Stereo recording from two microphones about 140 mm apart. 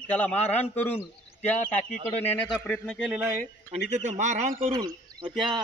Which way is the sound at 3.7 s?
55° right (ahead or behind).